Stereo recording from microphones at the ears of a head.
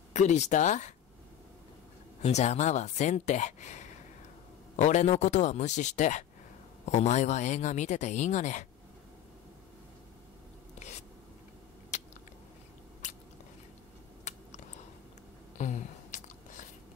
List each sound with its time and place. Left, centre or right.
0.1 s speech: left
2.2 s speech: left
15.5 s a sound: left